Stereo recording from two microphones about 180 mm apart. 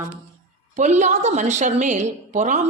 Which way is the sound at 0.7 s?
40° right (ahead or behind).